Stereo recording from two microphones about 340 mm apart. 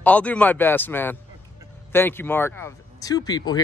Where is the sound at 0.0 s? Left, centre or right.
Centre.